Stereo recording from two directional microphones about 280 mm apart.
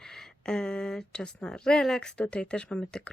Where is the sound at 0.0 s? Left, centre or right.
Centre.